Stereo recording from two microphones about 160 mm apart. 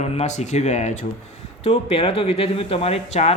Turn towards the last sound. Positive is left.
turn(degrees=40)  # may be behind; listen again after turning